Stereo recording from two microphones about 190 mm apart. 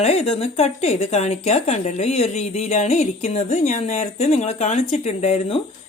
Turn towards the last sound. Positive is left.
turn(degrees=35)  # may be behind; listen again after turning